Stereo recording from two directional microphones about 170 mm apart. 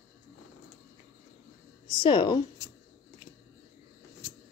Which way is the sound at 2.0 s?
25° left (ahead or behind).